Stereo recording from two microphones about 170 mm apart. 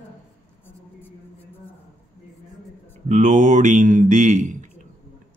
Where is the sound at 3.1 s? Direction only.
45° right (ahead or behind).